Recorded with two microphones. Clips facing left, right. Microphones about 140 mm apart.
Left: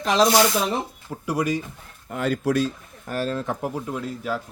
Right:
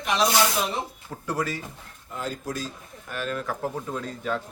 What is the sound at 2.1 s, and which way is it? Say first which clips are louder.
Speech: left 9 dB; 70° left (ahead or behind).